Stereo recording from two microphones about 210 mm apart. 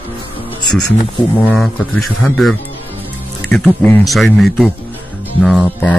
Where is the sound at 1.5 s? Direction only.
5° left (ahead or behind).